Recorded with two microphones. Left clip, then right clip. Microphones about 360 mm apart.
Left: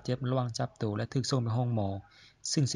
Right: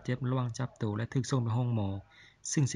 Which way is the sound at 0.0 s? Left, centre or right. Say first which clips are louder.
Left 3 dB; centre.